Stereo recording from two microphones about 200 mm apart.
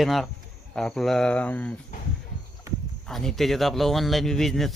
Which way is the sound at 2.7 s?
15° right (ahead or behind).